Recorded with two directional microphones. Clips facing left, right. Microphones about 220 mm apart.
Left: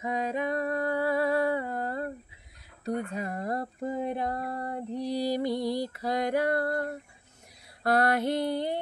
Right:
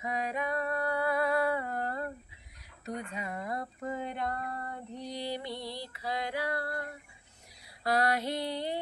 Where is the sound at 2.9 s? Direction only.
40° left (ahead or behind).